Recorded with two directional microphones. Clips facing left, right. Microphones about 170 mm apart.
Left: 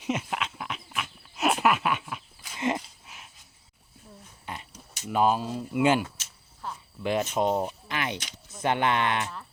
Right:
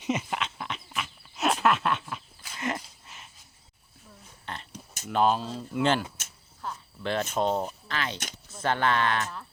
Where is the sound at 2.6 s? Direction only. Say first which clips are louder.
Left 4 dB; 25° left (ahead or behind).